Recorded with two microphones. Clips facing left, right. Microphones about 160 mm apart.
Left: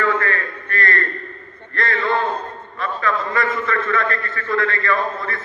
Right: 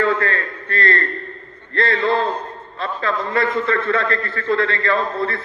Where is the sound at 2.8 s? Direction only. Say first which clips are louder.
Even; 30° right (ahead or behind).